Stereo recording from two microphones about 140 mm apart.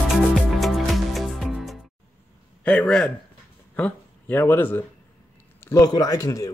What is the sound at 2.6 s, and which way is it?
A man's voice, 10° left (ahead or behind).